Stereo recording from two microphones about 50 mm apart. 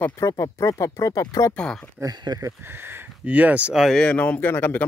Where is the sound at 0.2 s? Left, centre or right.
Left.